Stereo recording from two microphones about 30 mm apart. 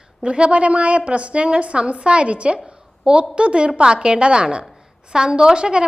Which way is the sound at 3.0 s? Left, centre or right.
Right.